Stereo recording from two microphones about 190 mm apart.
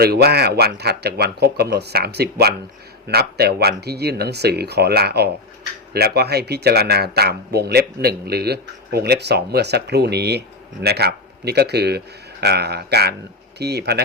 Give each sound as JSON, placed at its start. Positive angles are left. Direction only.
{"t": 0.0, "sound": "speech", "side_deg": -55}